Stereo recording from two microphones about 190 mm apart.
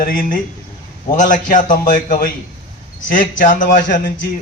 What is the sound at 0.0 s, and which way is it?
Speech, 50° left (ahead or behind).